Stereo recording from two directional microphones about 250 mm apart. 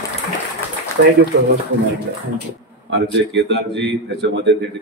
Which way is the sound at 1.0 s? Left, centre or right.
Right.